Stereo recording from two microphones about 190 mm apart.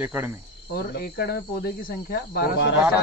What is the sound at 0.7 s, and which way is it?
Speech, 55° left (ahead or behind).